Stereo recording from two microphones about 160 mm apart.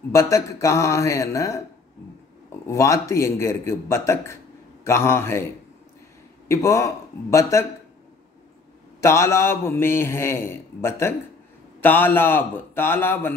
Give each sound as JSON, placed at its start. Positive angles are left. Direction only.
{"t": 0.1, "sound": "a man's voice", "side_deg": 20}
{"t": 2.6, "sound": "a man's voice", "side_deg": 20}
{"t": 6.5, "sound": "a man's voice", "side_deg": 20}
{"t": 9.0, "sound": "a man's voice", "side_deg": 15}